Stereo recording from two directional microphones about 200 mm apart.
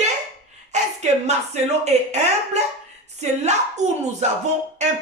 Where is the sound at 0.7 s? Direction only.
35° right (ahead or behind).